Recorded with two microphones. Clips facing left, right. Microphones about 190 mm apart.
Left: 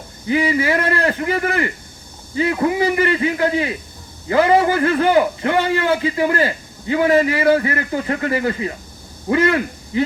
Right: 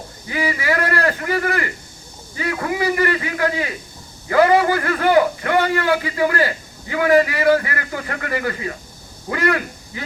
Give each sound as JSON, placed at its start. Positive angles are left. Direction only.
{"t": 0.3, "sound": "a man's voice", "side_deg": 20}